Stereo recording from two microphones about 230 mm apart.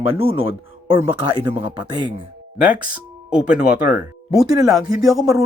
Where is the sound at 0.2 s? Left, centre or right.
Right.